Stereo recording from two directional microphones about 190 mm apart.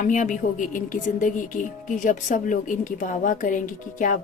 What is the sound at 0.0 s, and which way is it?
Speech, 40° left (ahead or behind).